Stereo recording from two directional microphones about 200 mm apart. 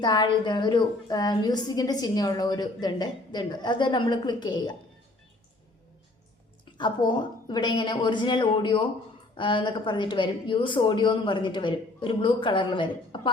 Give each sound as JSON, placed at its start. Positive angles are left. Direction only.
{"t": 0.0, "sound": "a woman's voice", "side_deg": 20}
{"t": 6.7, "sound": "a woman's voice", "side_deg": 25}